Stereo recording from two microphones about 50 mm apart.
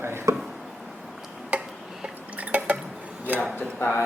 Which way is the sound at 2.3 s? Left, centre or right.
Right.